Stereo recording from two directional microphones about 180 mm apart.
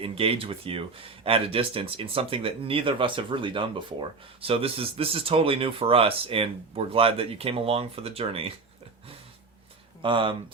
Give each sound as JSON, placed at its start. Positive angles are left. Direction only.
{"t": 0.0, "sound": "speech", "side_deg": -30}
{"t": 10.0, "sound": "speech", "side_deg": -30}